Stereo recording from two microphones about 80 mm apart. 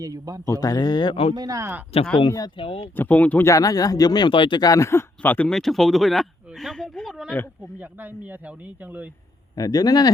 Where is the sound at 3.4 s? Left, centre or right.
Left.